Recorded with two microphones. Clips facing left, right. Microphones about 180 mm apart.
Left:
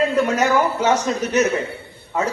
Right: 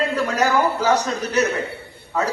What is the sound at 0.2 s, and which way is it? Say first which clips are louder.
A man's voice: even; 35° right (ahead or behind).